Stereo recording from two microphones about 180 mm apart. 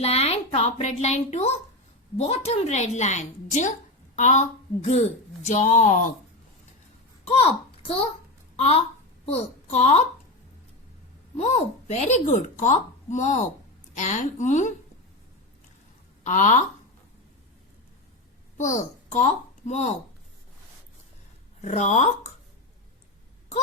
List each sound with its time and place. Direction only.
0.0 s a woman's voice: 35° left (ahead or behind)
7.3 s a child's voice: 35° left (ahead or behind)
9.2 s speech: 35° left (ahead or behind)
11.3 s a woman's voice: 40° left (ahead or behind)
16.2 s a woman's voice: 45° left (ahead or behind)
18.5 s a child's voice: 45° left (ahead or behind)
21.6 s a woman's voice: 40° left (ahead or behind)